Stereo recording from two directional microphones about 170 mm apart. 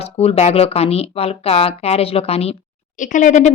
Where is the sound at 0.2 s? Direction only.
40° left (ahead or behind).